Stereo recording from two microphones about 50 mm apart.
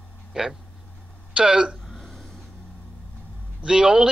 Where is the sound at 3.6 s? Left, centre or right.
Centre.